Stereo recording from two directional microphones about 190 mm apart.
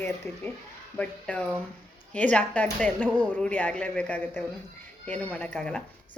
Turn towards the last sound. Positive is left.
turn(degrees=5)  # may be behind; listen again after turning